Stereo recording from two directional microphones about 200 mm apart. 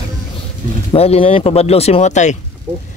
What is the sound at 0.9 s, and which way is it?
Speech, 30° left (ahead or behind).